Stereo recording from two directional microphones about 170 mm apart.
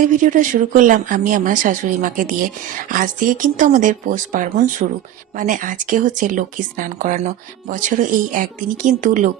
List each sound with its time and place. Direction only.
0.0 s speech: 50° right (ahead or behind)